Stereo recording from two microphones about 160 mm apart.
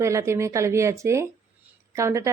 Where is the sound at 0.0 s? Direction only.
20° right (ahead or behind).